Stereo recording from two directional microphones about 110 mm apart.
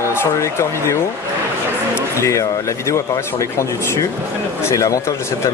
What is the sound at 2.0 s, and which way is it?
Speech, 30° left (ahead or behind).